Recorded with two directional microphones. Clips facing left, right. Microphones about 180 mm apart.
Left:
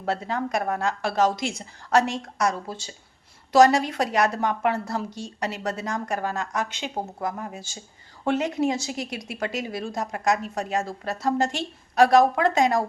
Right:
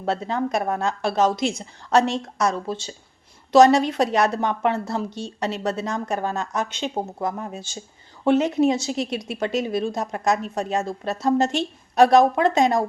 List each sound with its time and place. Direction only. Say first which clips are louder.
0.0 s a woman's voice: right 3 dB; 25° right (ahead or behind)